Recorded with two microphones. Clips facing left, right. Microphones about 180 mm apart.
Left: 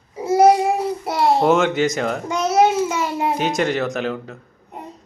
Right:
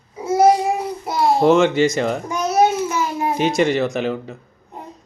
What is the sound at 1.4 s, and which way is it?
Speech, 5° left (ahead or behind).